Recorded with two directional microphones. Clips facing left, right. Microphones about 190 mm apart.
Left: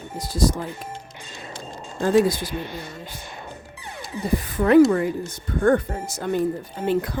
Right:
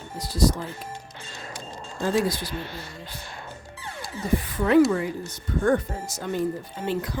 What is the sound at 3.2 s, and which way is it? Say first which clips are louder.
Music: left 2 dB; 20° left (ahead or behind).